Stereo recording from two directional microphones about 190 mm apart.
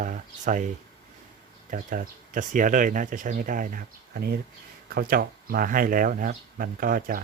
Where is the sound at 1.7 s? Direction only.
45° right (ahead or behind).